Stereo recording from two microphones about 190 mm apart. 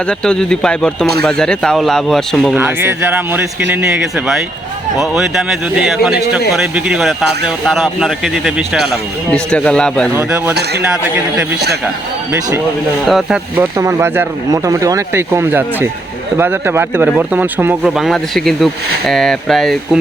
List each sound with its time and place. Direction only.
0.1 s speech: 5° left (ahead or behind)
2.6 s speech: 10° right (ahead or behind); by 10.1 s 5° left (ahead or behind)
10.2 s speech: 10° right (ahead or behind)
10.5 s speech: 60° right (ahead or behind)
12.3 s speech: 10° right (ahead or behind)
13.7 s speech: 15° right (ahead or behind); by 20.0 s centre (ahead or behind)